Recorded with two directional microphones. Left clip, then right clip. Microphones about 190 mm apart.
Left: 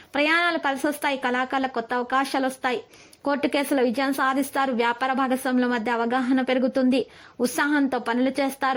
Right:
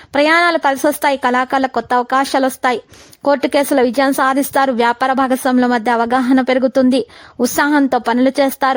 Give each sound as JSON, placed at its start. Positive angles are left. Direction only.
{"t": 0.1, "sound": "a woman's voice", "side_deg": -40}